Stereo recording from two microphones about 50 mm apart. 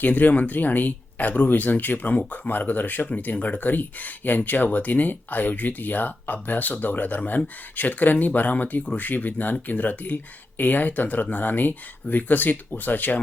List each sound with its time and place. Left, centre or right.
0.0 s speech: left